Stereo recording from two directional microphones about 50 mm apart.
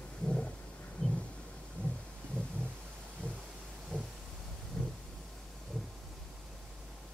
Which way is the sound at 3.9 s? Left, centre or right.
Centre.